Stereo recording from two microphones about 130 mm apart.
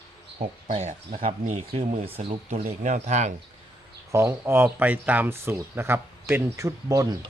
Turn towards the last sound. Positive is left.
turn(degrees=-25)  # may be behind; listen again after turning